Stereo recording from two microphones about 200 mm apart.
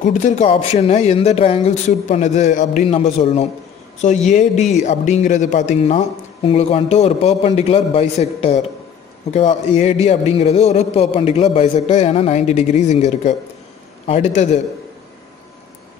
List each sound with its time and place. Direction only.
0.0 s speech: 40° left (ahead or behind)
9.8 s speech: 35° left (ahead or behind)